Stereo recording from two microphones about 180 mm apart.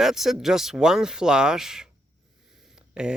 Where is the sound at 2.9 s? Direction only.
5° right (ahead or behind).